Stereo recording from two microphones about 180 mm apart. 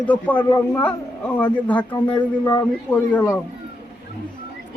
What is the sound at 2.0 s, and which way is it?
Speech, 25° left (ahead or behind).